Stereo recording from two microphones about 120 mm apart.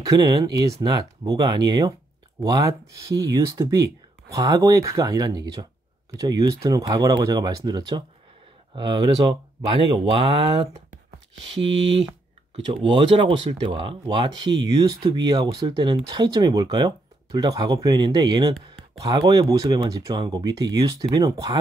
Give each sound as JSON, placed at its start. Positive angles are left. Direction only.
{"t": 0.0, "sound": "speech", "side_deg": -30}
{"t": 12.5, "sound": "speech", "side_deg": -50}